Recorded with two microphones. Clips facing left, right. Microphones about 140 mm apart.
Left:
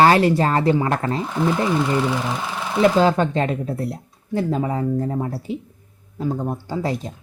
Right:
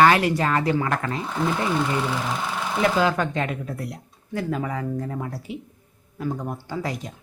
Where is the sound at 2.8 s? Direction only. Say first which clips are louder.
Left 6 dB; 30° left (ahead or behind).